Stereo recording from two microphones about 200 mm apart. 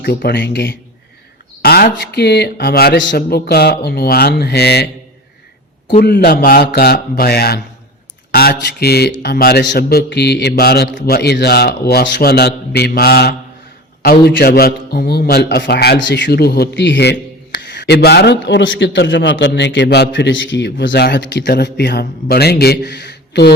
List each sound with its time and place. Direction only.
0.0 s a man's voice: 55° left (ahead or behind)
1.6 s a man's voice: 50° left (ahead or behind)
6.0 s a man's voice: 55° left (ahead or behind)
17.6 s a sound: 60° left (ahead or behind)
18.4 s a man's voice: 65° left (ahead or behind)